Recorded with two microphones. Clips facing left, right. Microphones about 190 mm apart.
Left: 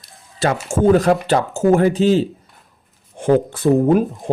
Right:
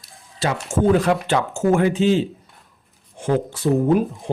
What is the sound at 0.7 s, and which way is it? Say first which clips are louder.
Speech: left 3 dB; 40° left (ahead or behind).